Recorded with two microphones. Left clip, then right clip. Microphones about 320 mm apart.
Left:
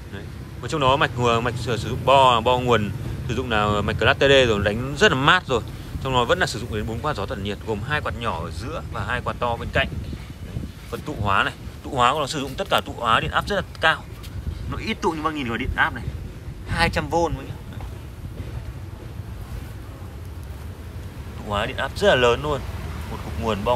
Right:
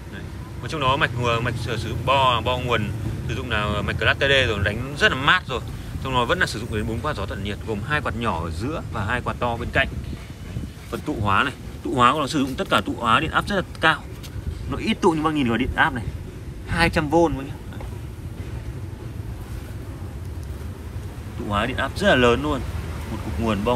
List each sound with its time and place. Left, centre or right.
0.7 s speech: centre
10.9 s speech: centre
21.5 s speech: centre